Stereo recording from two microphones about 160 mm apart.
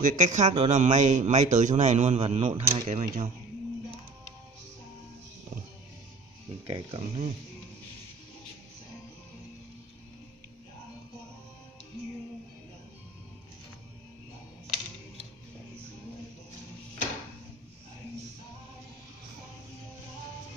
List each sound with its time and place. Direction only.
0.0 s speech: 50° right (ahead or behind)
6.7 s speech: 40° right (ahead or behind)